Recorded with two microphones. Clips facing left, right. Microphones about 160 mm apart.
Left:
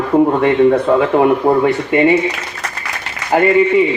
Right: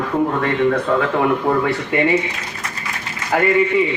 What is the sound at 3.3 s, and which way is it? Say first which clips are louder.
Speech: left 5 dB; 25° left (ahead or behind).